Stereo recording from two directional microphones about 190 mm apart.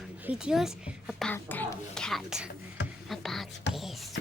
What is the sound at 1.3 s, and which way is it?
Speech, 10° left (ahead or behind).